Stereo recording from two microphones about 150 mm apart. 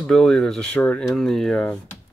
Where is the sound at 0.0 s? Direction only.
5° left (ahead or behind).